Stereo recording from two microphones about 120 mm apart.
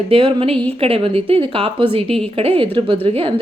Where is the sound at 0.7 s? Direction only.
55° right (ahead or behind).